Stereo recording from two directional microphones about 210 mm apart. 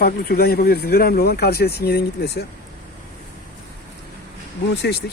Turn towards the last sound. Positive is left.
turn(degrees=55)  # may be behind; listen again after turning